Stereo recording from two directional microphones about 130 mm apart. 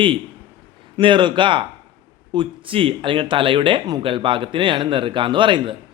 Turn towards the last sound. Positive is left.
turn(degrees=-40)  # may be behind; listen again after turning